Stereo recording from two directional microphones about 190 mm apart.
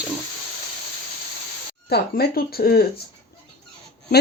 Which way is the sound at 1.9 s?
55° left (ahead or behind).